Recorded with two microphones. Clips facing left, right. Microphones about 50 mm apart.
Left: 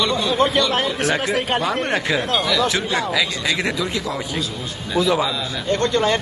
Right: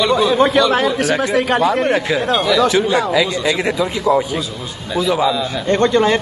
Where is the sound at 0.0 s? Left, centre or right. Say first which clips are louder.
Right 5 dB; centre.